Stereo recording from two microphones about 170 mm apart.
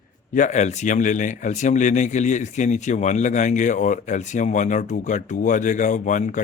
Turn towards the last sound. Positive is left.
turn(degrees=50)  # may be behind; listen again after turning